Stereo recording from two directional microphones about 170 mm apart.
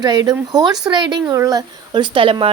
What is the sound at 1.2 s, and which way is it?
Speech, 15° right (ahead or behind).